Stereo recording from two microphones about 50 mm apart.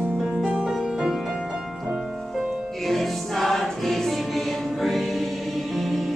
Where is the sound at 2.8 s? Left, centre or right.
Centre.